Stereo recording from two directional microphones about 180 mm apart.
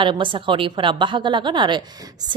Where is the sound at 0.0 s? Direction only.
25° right (ahead or behind).